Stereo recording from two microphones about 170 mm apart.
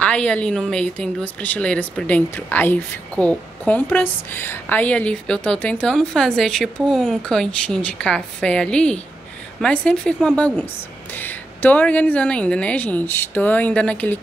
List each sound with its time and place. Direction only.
0.0 s a woman's voice: 5° left (ahead or behind)